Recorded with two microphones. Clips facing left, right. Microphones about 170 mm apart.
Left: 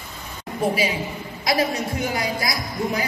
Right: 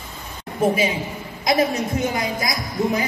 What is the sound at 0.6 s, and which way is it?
A woman's voice, 20° right (ahead or behind).